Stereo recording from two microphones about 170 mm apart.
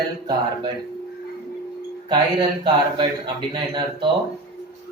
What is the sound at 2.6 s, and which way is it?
Speech, 30° right (ahead or behind).